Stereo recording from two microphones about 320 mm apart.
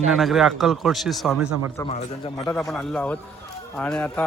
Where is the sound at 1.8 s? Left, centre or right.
Centre.